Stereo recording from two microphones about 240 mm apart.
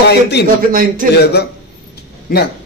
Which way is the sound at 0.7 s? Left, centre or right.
Right.